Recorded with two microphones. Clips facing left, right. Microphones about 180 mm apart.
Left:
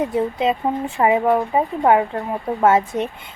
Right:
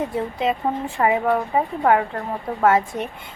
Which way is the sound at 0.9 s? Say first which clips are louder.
Left 3 dB; 20° left (ahead or behind).